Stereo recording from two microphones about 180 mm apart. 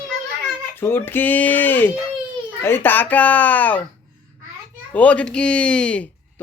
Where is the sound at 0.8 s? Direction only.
10° left (ahead or behind).